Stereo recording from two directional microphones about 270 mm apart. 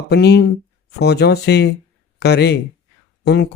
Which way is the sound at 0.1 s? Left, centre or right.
Left.